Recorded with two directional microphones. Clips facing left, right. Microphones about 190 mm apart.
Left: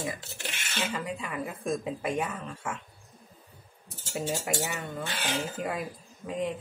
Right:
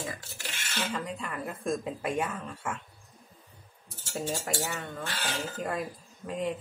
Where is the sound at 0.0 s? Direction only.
20° left (ahead or behind).